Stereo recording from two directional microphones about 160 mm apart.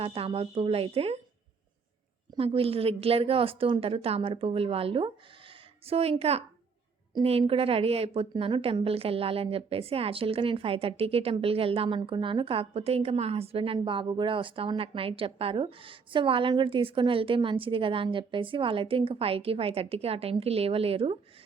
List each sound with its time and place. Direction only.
0.0 s speech: 35° right (ahead or behind)
2.3 s speech: 35° right (ahead or behind)